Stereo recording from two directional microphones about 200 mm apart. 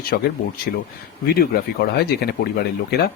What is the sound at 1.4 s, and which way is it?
Speech, 50° left (ahead or behind).